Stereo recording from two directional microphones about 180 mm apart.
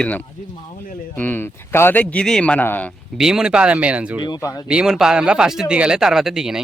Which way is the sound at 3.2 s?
5° right (ahead or behind).